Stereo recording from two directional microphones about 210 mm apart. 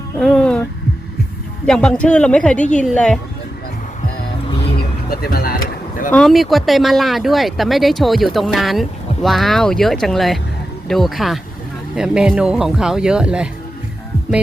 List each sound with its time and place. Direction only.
0.2 s a sound: 5° left (ahead or behind)
1.6 s speech: 5° left (ahead or behind)
4.8 s vehicle: 45° left (ahead or behind)
6.1 s speech: centre (ahead or behind)